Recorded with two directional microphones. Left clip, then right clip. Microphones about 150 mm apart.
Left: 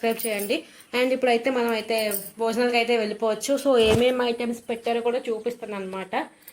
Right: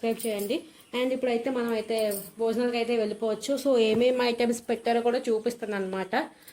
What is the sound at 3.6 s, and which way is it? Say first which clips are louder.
Speech: left 3 dB; 50° right (ahead or behind).